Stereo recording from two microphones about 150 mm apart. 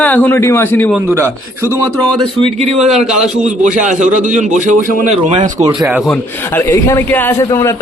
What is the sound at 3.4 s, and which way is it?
A man's voice, 55° right (ahead or behind).